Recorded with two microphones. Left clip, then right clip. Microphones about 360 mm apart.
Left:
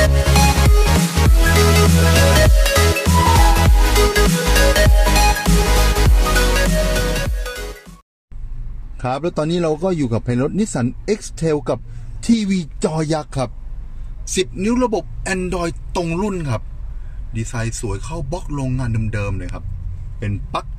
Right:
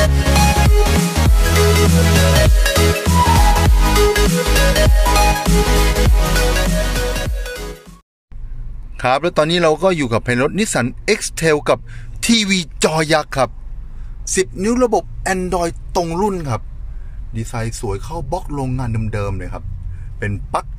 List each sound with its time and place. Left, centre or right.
0.0 s music: centre
8.9 s speech: right
13.1 s speech: right